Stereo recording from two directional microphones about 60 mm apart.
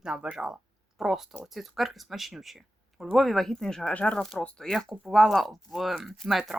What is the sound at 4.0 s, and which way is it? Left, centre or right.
Speech, left.